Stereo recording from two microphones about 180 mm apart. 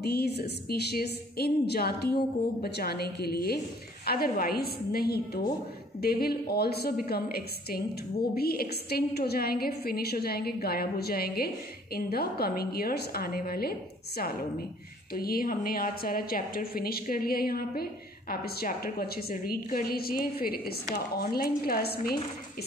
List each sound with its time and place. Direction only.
0.0 s a woman's voice: 60° left (ahead or behind)